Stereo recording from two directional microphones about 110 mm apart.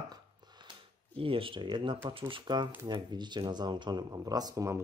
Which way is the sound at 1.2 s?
55° right (ahead or behind).